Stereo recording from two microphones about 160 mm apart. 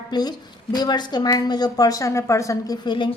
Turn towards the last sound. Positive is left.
turn(degrees=25)  # may be behind; listen again after turning